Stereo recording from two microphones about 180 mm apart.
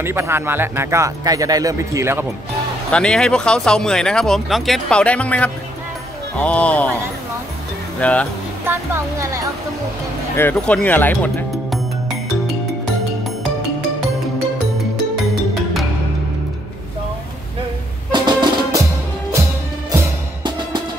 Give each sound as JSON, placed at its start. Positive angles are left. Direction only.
{"t": 0.0, "sound": "speech", "side_deg": -15}
{"t": 2.9, "sound": "speech", "side_deg": 5}
{"t": 8.0, "sound": "speech", "side_deg": 5}
{"t": 8.6, "sound": "speech", "side_deg": -15}
{"t": 10.3, "sound": "speech", "side_deg": 10}
{"t": 18.1, "sound": "music", "side_deg": -25}
{"t": 20.4, "sound": "music", "side_deg": -25}